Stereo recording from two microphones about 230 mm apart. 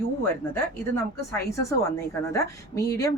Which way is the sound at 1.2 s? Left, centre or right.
Centre.